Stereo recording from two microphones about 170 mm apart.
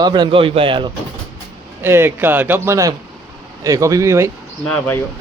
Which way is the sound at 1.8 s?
15° right (ahead or behind).